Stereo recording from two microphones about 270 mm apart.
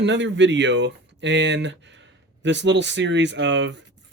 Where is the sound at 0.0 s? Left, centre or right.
Right.